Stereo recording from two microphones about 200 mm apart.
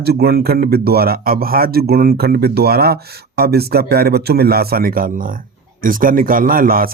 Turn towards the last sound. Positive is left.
turn(degrees=-45)  # may be behind; listen again after turning